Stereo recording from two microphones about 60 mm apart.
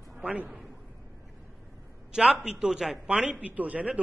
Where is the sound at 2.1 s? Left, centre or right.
Centre.